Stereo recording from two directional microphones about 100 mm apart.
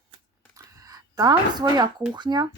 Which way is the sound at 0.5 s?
35° right (ahead or behind).